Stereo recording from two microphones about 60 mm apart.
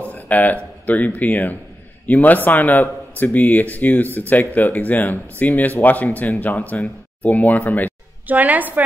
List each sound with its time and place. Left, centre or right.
0.0 s a sound: left
0.8 s a man's voice: left
8.3 s a woman's voice: right